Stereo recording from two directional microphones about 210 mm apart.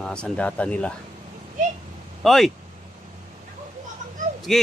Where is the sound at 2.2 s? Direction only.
Centre (ahead or behind).